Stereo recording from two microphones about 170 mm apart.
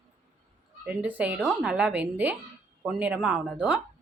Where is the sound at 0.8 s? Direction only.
10° right (ahead or behind).